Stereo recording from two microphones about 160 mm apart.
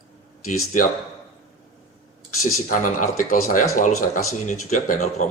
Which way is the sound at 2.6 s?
55° left (ahead or behind).